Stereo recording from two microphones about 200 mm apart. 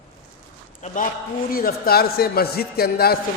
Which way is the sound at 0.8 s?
40° left (ahead or behind).